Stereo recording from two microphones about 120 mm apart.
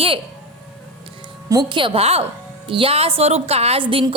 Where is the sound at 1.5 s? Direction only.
35° right (ahead or behind).